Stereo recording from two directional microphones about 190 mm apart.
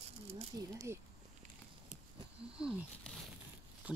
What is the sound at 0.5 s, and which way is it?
Speech, 15° right (ahead or behind).